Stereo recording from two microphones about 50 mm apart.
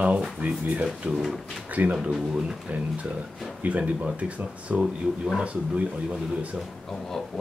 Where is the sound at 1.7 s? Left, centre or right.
Right.